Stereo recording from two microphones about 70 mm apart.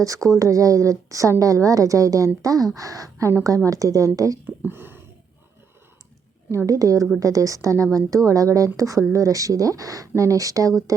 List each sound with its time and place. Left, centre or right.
0.0 s a woman's voice: right
4.4 s a sound: right
6.5 s a woman's voice: right